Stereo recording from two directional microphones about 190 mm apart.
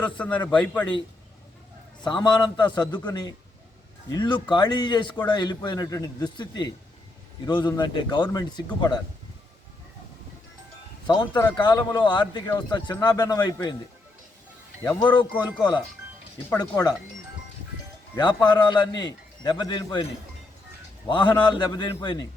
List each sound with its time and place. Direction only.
0.0 s a man's voice: 5° left (ahead or behind)
2.0 s a man's voice: 25° left (ahead or behind)
11.0 s a man's voice: 20° left (ahead or behind)
15.0 s a man's voice: 25° left (ahead or behind)
16.5 s a man's voice: 15° left (ahead or behind)
18.1 s a man's voice: 20° left (ahead or behind)
21.1 s a man's voice: 25° left (ahead or behind)